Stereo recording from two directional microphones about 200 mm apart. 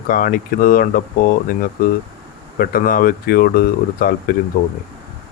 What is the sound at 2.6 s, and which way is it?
Speech, 45° left (ahead or behind).